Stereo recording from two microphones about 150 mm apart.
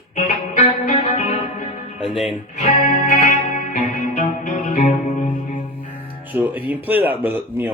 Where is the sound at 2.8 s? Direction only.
65° left (ahead or behind).